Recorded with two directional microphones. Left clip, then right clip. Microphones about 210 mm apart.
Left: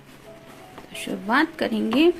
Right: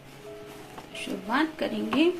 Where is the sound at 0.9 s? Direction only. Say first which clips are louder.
Left 6 dB; 50° left (ahead or behind).